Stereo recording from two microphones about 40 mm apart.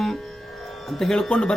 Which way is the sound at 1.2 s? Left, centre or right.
Left.